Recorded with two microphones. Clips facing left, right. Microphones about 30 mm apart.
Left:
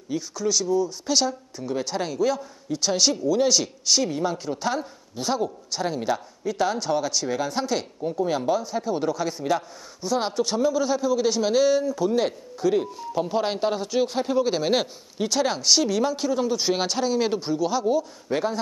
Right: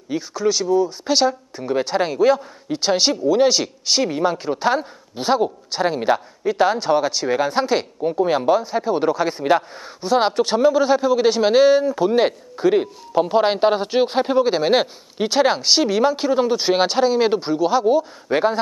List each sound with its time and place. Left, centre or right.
0.1 s speech: right